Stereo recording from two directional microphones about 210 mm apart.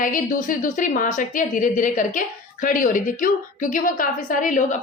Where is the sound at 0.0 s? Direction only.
40° left (ahead or behind).